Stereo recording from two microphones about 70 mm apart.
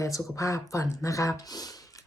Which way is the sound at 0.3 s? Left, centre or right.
Left.